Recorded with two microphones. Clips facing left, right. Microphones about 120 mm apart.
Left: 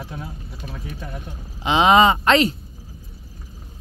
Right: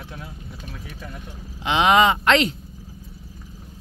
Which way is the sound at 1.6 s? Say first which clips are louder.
Left 2 dB; 15° left (ahead or behind).